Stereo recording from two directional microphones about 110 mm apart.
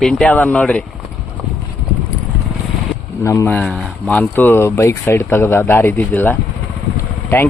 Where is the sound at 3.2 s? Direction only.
25° left (ahead or behind).